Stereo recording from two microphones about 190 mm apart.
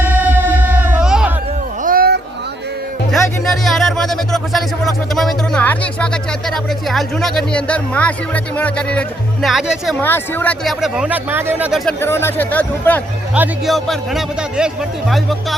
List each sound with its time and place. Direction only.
0.0 s music: 10° right (ahead or behind)
1.8 s a sound: 50° right (ahead or behind)
3.1 s speech: centre (ahead or behind)
10.0 s speech: 10° left (ahead or behind); by 11.8 s 10° right (ahead or behind)
11.9 s speech: 10° left (ahead or behind)
13.3 s speech: 5° right (ahead or behind)